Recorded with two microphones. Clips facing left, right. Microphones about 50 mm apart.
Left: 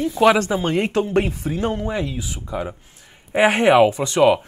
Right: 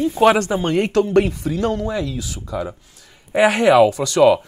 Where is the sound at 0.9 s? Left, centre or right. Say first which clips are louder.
Right 4 dB; left.